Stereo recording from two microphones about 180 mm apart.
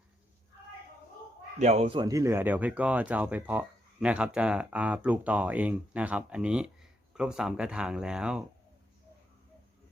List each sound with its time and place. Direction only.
1.5 s speech: 40° right (ahead or behind); by 8.4 s 5° right (ahead or behind)